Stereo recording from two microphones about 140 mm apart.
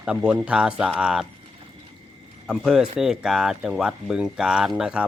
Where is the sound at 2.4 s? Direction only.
5° right (ahead or behind).